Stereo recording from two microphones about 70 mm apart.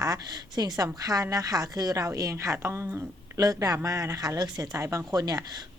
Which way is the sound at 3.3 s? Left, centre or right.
Right.